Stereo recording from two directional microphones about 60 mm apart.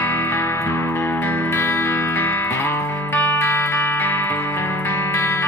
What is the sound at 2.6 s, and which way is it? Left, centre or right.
Music, left.